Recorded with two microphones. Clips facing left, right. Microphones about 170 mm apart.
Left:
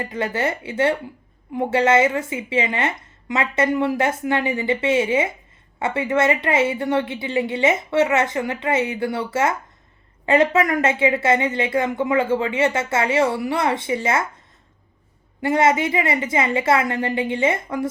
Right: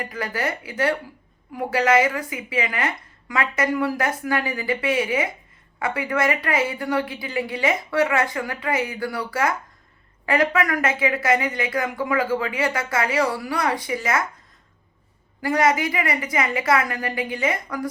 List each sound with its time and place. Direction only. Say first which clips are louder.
0.0 s speech: left 4 dB; 25° left (ahead or behind)
15.4 s speech: left 2 dB; 25° left (ahead or behind)